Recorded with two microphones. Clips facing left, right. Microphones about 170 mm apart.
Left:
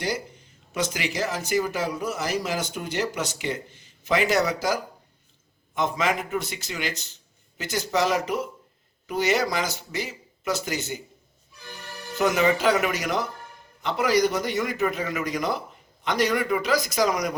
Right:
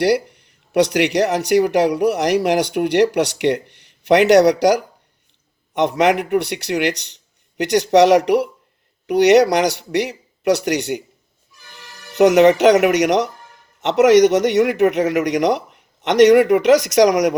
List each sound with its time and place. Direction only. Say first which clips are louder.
0.0 s speech: right 13 dB; 70° right (ahead or behind)
12.1 s speech: right 11 dB; 70° right (ahead or behind)